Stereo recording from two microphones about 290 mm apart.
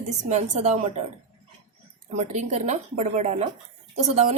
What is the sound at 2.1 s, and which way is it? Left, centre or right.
A woman's voice, right.